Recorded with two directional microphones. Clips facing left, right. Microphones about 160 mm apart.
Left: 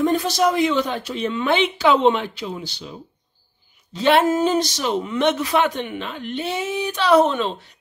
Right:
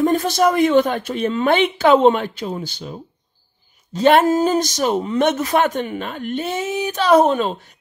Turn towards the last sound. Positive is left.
turn(degrees=-40)  # may be behind; listen again after turning